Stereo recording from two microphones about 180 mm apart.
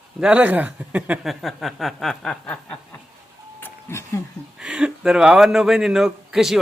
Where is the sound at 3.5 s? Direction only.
15° left (ahead or behind).